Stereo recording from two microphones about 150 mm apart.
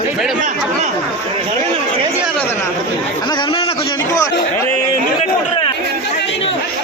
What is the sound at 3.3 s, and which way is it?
Chatter, 30° left (ahead or behind).